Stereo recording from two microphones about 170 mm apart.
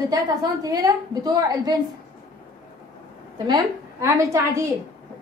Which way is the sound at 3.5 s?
15° right (ahead or behind).